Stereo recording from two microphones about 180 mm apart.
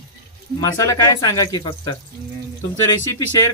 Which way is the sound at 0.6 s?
15° left (ahead or behind).